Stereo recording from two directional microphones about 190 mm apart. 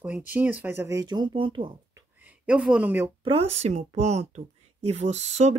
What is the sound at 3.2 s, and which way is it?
Speech, 30° right (ahead or behind).